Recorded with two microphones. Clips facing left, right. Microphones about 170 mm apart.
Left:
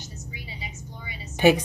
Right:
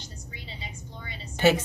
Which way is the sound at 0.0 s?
5° left (ahead or behind).